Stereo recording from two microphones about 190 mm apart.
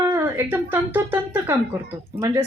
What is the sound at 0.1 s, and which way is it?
A woman's voice, 10° right (ahead or behind).